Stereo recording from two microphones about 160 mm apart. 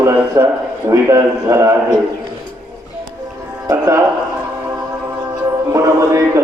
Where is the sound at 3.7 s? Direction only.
15° right (ahead or behind).